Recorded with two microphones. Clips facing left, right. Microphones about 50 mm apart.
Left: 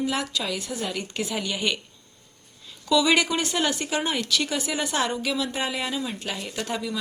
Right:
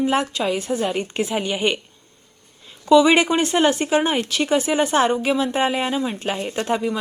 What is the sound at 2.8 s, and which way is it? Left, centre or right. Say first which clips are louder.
Speech: right 7 dB; right.